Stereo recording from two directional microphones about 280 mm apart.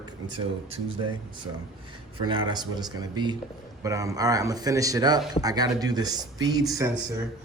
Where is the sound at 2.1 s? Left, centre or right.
Centre.